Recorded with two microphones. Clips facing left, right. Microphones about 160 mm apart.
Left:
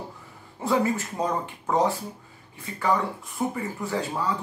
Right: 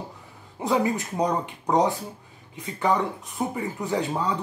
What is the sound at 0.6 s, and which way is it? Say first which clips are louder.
Speech: even; 20° right (ahead or behind).